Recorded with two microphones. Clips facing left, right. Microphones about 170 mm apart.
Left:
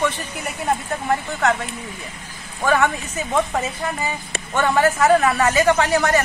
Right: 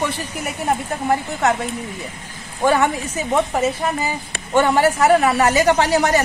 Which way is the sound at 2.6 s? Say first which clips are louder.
Right 2 dB; 20° right (ahead or behind).